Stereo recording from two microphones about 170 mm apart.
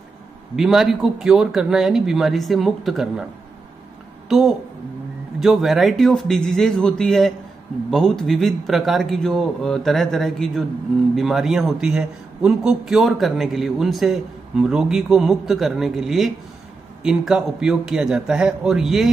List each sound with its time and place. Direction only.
0.6 s a man's voice: centre (ahead or behind)
4.3 s a woman's voice: centre (ahead or behind)